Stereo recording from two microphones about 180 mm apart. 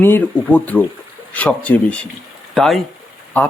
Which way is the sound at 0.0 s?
10° left (ahead or behind).